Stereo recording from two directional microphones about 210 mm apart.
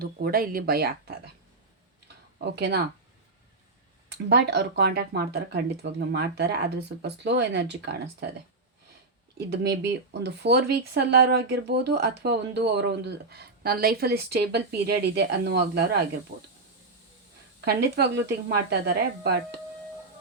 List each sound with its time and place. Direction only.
0.0 s speech: 45° right (ahead or behind)
2.4 s speech: 55° right (ahead or behind)
4.1 s speech: 50° right (ahead or behind)
9.5 s speech: 50° right (ahead or behind)
17.7 s speech: 50° right (ahead or behind)